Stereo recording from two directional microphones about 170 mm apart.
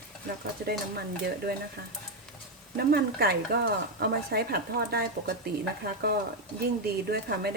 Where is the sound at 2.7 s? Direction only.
65° right (ahead or behind).